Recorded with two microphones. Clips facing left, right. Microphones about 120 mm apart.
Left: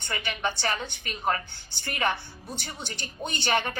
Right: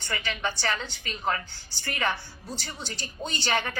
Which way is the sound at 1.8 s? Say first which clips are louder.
Left 1 dB; 20° left (ahead or behind).